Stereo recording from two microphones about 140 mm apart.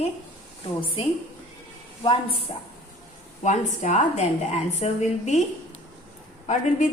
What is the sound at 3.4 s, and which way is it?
A woman's voice, 60° left (ahead or behind).